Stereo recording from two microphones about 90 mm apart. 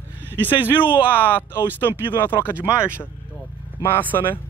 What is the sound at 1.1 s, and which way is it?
Speech, 20° left (ahead or behind).